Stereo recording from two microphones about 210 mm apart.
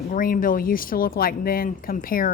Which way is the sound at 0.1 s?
40° left (ahead or behind).